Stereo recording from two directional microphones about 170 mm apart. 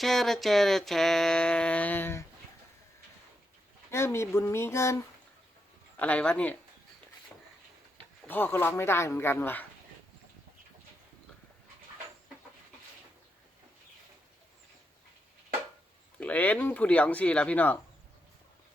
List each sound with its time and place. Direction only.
0.0 s a sound: centre (ahead or behind)
3.9 s speech: 15° left (ahead or behind)
8.3 s speech: 10° left (ahead or behind)
16.2 s speech: 10° left (ahead or behind)